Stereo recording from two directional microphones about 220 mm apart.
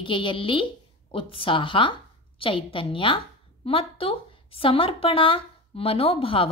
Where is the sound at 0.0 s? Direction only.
20° left (ahead or behind).